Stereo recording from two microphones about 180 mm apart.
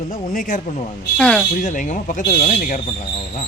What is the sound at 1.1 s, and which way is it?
Speech, 5° left (ahead or behind).